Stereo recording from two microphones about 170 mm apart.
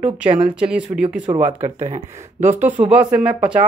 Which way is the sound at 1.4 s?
45° right (ahead or behind).